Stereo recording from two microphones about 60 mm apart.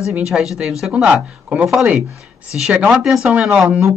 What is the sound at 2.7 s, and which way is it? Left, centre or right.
Speech, right.